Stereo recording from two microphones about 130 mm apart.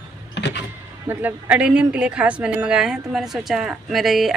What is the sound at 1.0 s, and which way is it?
A woman's voice, 10° right (ahead or behind).